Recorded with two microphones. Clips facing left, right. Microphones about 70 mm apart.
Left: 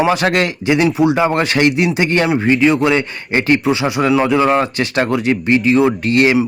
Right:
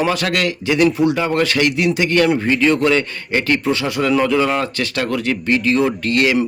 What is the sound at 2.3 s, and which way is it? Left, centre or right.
Speech, centre.